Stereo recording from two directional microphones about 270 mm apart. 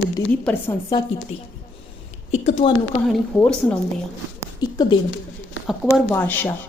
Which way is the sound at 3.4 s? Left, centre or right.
Centre.